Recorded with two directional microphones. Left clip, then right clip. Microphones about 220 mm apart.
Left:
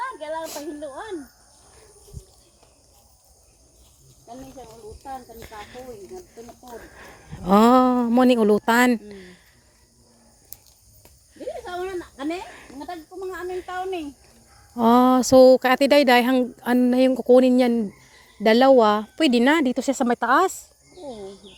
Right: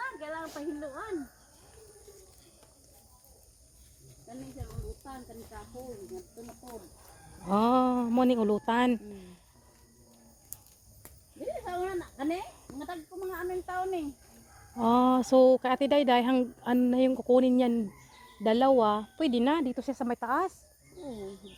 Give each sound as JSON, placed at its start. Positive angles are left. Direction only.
{"t": 0.4, "sound": "a sound", "side_deg": 40}
{"t": 7.4, "sound": "speech", "side_deg": 40}
{"t": 11.3, "sound": "speech", "side_deg": 30}
{"t": 18.4, "sound": "speech", "side_deg": 35}